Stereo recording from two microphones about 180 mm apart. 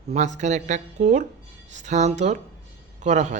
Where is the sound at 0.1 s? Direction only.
40° right (ahead or behind).